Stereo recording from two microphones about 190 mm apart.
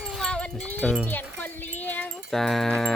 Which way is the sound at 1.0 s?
10° left (ahead or behind).